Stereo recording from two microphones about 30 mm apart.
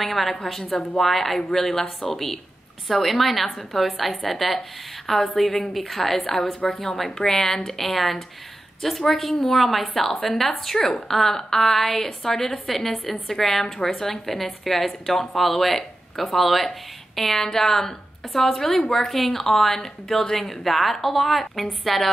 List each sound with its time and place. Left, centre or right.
0.0 s a woman's voice: centre
7.8 s a woman's voice: centre
17.4 s a woman's voice: centre